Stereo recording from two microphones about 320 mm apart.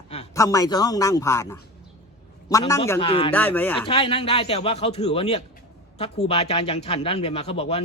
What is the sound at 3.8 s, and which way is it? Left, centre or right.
A man's voice, centre.